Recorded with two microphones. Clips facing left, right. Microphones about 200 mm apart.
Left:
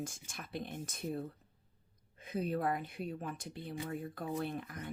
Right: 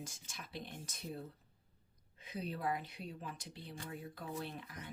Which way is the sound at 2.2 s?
50° left (ahead or behind).